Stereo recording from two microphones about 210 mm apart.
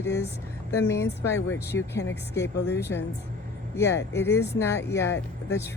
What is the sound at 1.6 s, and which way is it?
Speech, 10° left (ahead or behind).